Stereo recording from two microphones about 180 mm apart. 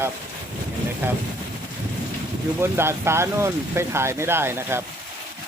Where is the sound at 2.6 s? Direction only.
15° right (ahead or behind).